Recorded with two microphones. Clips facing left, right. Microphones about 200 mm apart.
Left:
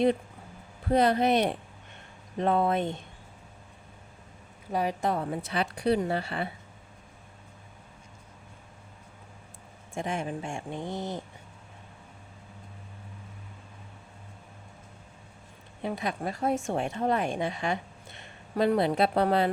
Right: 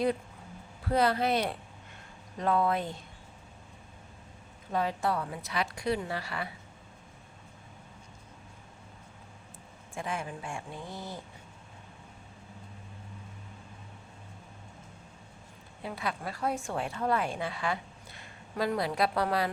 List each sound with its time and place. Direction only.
0.9 s speech: 20° left (ahead or behind)
4.7 s a woman's voice: 15° left (ahead or behind)
5.0 s speech: 25° left (ahead or behind)
10.0 s speech: 25° left (ahead or behind)
16.0 s a woman's voice: 20° left (ahead or behind)